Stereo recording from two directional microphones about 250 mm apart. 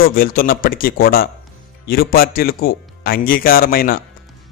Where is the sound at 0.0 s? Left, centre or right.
Left.